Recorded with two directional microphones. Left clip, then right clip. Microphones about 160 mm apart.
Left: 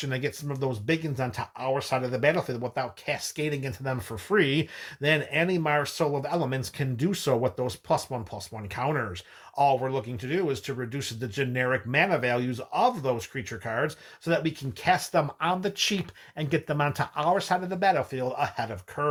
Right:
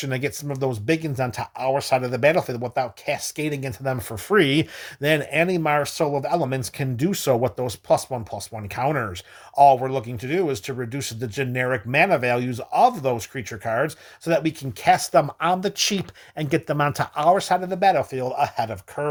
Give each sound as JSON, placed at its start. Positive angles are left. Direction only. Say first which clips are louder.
{"t": 0.0, "sound": "speech", "louder": "right 4 dB", "side_deg": -50}